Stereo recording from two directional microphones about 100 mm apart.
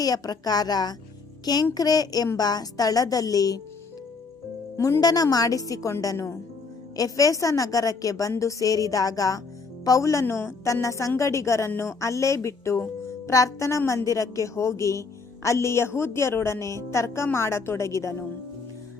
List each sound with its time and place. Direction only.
0.0 s a woman's voice: 40° left (ahead or behind)
4.8 s a woman's voice: 40° left (ahead or behind)